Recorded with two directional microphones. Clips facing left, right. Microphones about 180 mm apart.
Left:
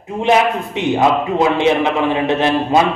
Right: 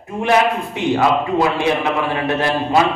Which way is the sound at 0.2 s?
20° left (ahead or behind).